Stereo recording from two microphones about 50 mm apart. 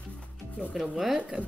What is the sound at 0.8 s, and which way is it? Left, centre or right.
Speech, centre.